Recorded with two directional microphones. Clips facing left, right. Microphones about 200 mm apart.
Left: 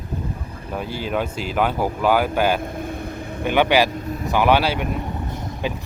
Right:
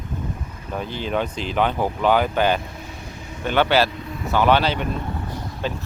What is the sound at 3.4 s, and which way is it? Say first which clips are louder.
Speech: left 1 dB; 15° left (ahead or behind).